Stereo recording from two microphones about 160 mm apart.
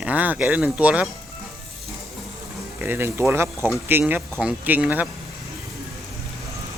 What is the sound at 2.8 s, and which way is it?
Speech, 15° right (ahead or behind).